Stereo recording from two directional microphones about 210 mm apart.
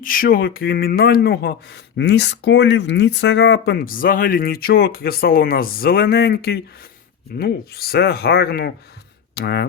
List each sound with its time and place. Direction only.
0.0 s speech: 40° left (ahead or behind)